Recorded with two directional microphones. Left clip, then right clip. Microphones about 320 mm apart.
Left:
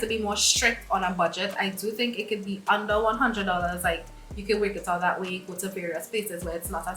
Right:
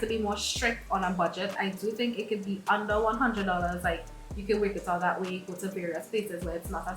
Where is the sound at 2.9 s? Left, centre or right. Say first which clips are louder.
Left 3 dB; centre.